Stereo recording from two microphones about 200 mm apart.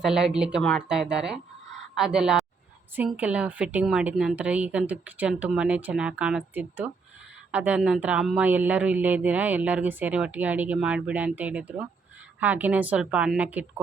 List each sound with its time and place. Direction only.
0.0 s a woman's voice: 5° right (ahead or behind)